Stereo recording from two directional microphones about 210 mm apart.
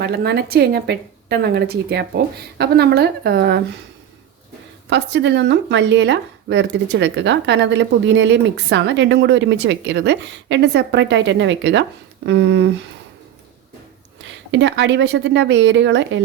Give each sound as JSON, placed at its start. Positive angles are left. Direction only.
{"t": 0.0, "sound": "a woman's voice", "side_deg": -50}
{"t": 4.9, "sound": "speech", "side_deg": -60}
{"t": 14.5, "sound": "speech", "side_deg": -60}